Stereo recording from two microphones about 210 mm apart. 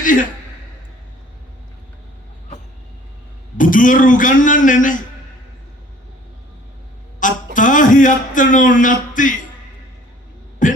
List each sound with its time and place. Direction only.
0.0 s a man's voice: 40° left (ahead or behind)
3.6 s a man's voice: 40° left (ahead or behind)
7.2 s a sound: 40° left (ahead or behind)
10.6 s throat clearing: 40° left (ahead or behind)